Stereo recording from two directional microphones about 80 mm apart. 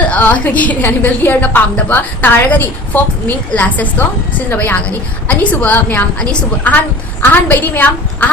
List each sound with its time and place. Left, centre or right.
0.1 s a woman's voice: centre